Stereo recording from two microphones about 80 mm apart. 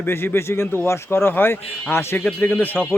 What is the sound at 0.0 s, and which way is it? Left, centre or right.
Speech, left.